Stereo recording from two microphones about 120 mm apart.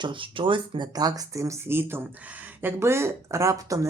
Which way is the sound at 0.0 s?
45° right (ahead or behind).